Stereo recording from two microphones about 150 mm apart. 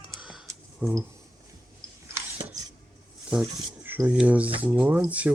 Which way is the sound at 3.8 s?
10° right (ahead or behind).